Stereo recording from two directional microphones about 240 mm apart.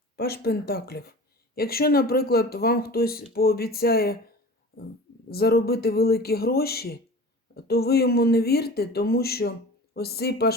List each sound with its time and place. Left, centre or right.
0.2 s speech: left
5.3 s speech: left